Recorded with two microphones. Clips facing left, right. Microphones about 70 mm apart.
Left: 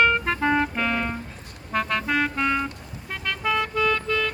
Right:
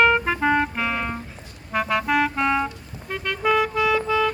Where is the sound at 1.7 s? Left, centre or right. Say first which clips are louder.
Right 3 dB; centre.